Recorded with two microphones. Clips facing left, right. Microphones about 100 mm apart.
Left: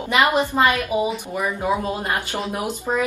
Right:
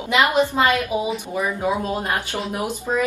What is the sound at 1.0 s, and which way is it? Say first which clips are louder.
Speech: even; centre (ahead or behind).